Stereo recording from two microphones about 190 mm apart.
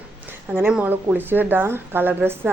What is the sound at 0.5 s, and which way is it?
A woman's voice, 5° right (ahead or behind).